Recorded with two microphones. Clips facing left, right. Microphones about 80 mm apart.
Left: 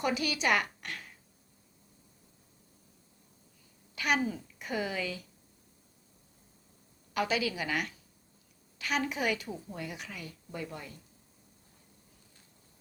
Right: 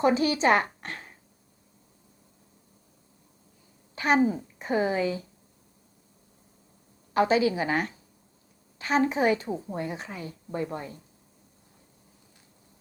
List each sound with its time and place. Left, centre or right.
0.0 s a sound: right
3.9 s a woman's voice: right
7.1 s a woman's voice: right